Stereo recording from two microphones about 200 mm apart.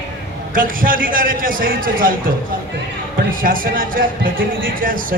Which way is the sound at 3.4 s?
45° right (ahead or behind).